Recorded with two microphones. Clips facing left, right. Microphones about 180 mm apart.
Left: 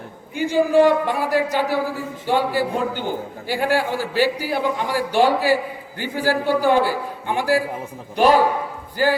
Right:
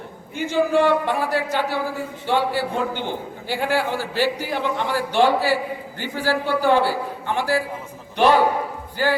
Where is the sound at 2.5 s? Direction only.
45° left (ahead or behind).